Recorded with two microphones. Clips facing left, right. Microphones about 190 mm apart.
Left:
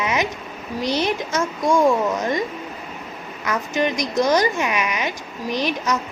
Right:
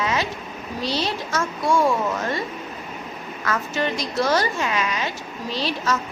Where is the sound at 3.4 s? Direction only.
15° left (ahead or behind).